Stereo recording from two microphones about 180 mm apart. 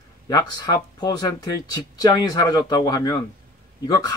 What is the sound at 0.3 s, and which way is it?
Speech, 20° left (ahead or behind).